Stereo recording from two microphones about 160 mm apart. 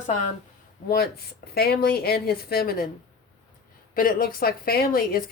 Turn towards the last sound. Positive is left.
turn(degrees=70)  # may be behind; listen again after turning